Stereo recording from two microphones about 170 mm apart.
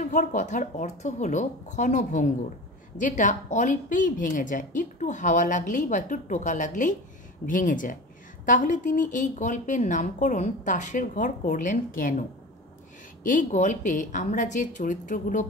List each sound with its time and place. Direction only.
0.0 s speech: 45° left (ahead or behind)